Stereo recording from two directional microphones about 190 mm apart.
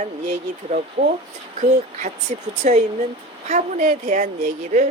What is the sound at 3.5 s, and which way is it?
Speech, 40° right (ahead or behind).